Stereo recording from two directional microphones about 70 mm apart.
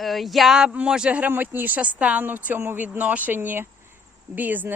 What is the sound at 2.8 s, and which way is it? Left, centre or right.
Speech, right.